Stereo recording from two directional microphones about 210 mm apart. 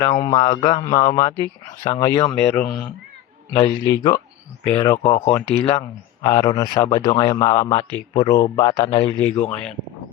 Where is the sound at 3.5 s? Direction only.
20° left (ahead or behind).